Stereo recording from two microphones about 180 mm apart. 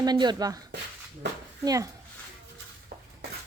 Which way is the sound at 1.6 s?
20° right (ahead or behind).